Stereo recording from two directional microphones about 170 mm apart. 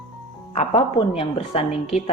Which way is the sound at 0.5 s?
35° left (ahead or behind).